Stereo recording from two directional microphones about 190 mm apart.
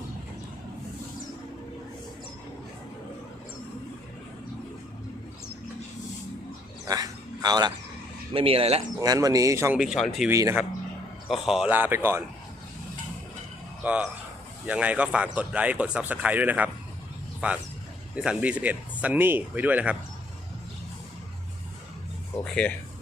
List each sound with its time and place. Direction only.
6.8 s a sound: 20° right (ahead or behind)
8.3 s speech: 30° right (ahead or behind)
9.0 s speech: 20° right (ahead or behind)
9.8 s speech: centre (ahead or behind)
10.2 s speech: 15° right (ahead or behind)
11.4 s speech: 5° right (ahead or behind)
13.8 s speech: 5° right (ahead or behind)
22.4 s speech: 5° left (ahead or behind)